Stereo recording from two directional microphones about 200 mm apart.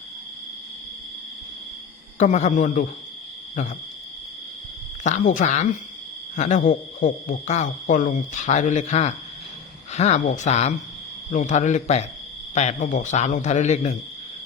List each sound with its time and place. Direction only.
2.1 s speech: 35° left (ahead or behind)
5.0 s speech: 40° left (ahead or behind)